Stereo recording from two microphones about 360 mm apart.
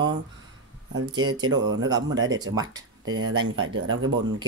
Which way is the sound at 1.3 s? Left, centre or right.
Centre.